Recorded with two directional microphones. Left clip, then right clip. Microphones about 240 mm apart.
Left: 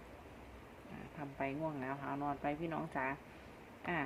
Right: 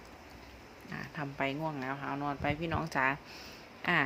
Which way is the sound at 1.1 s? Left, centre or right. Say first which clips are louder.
Right 6 dB; right.